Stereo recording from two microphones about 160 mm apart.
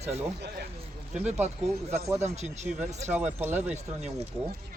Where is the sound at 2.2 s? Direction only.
45° right (ahead or behind).